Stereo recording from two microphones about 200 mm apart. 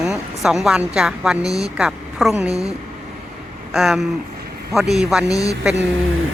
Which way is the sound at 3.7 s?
Centre (ahead or behind).